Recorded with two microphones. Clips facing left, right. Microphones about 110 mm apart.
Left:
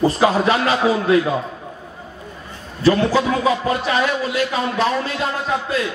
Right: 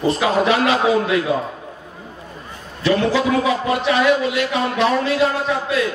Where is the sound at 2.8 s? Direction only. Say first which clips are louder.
Left 2 dB; 35° left (ahead or behind).